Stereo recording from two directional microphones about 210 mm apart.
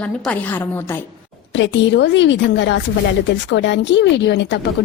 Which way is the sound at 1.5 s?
60° left (ahead or behind).